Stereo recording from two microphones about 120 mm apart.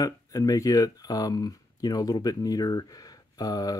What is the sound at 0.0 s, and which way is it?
Speech, 30° left (ahead or behind).